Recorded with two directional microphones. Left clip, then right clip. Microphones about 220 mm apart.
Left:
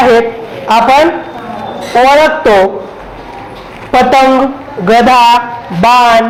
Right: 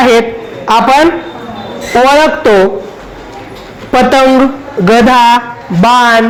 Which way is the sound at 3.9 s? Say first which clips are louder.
Even; 55° right (ahead or behind).